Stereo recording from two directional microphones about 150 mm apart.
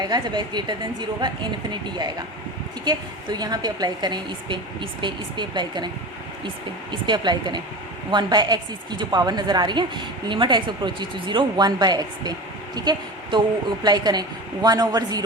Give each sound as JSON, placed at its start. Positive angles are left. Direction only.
{"t": 0.0, "sound": "a woman's voice", "side_deg": -30}
{"t": 6.9, "sound": "a woman's voice", "side_deg": -30}